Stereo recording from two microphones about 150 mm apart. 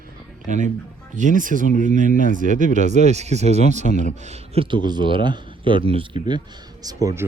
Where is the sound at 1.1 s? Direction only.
55° right (ahead or behind).